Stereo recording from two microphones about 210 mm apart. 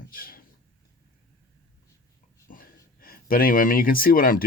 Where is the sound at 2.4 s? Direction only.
40° left (ahead or behind).